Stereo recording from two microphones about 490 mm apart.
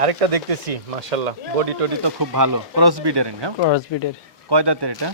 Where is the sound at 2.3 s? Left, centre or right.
Right.